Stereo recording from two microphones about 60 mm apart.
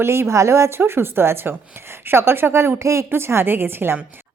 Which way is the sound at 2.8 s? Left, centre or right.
Right.